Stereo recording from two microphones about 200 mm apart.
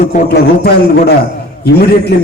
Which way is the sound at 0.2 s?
50° left (ahead or behind).